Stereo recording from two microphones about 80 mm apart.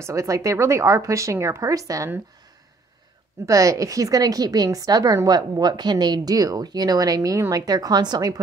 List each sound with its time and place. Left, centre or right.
0.0 s a woman's voice: right
3.4 s a woman's voice: right